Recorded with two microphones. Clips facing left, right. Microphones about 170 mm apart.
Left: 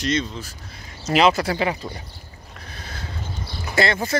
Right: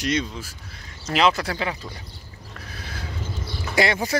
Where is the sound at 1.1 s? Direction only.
5° left (ahead or behind).